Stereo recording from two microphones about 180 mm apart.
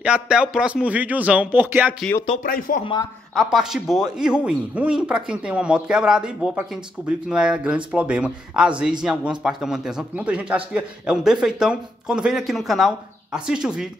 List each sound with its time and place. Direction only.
0.0 s speech: 5° right (ahead or behind)
2.4 s speech: 55° left (ahead or behind)
2.8 s speech: 25° left (ahead or behind)
3.3 s speech: centre (ahead or behind)